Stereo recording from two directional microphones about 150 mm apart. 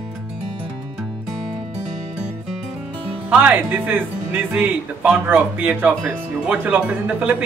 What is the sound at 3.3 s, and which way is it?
Speech, 10° right (ahead or behind).